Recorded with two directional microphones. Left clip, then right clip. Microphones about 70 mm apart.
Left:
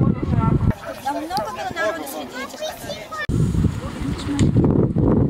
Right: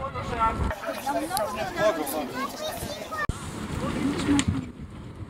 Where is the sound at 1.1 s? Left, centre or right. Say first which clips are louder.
Left 4 dB; centre.